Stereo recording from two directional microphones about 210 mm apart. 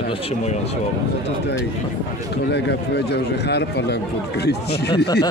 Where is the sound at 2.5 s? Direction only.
55° left (ahead or behind).